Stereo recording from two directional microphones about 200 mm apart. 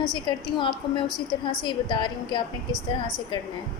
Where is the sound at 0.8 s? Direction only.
20° left (ahead or behind).